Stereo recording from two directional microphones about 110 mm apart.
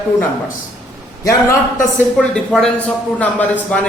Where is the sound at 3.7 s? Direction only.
15° left (ahead or behind).